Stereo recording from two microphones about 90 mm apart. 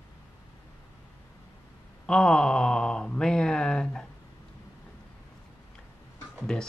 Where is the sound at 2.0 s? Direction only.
10° left (ahead or behind).